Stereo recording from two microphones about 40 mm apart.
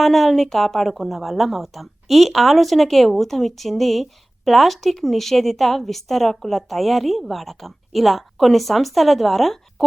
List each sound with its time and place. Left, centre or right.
0.0 s a woman's voice: centre